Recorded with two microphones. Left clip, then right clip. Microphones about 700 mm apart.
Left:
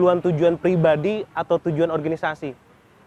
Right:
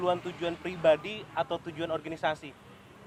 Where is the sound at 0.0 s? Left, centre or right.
Left.